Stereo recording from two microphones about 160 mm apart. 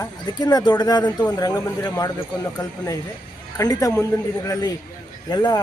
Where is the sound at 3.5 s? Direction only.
25° left (ahead or behind).